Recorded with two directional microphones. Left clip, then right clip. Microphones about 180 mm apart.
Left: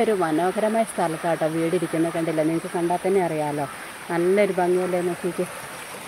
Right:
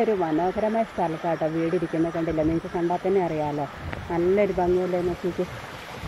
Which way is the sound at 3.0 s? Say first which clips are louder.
Left 2 dB; 15° left (ahead or behind).